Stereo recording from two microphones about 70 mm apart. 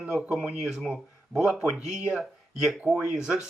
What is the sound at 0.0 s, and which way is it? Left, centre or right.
Speech, centre.